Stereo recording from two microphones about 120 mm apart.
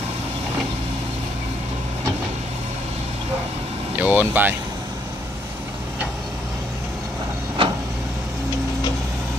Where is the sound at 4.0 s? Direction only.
15° right (ahead or behind).